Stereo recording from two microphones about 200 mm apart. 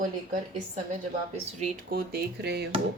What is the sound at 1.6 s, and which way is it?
Speech, 45° right (ahead or behind).